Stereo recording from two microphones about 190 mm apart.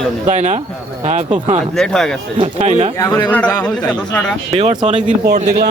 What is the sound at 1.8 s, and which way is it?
Speech, 5° left (ahead or behind).